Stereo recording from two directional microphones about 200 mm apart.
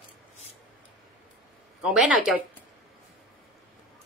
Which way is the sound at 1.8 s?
5° right (ahead or behind).